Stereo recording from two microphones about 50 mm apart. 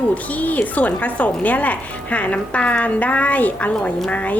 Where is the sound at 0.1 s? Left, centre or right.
Left.